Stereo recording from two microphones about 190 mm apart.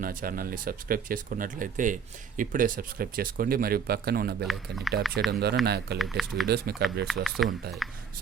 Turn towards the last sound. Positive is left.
turn(degrees=0)  # may be behind; listen again after turning